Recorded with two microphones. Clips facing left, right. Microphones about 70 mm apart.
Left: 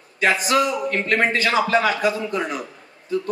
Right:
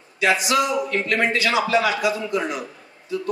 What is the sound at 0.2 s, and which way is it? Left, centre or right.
A man's voice, left.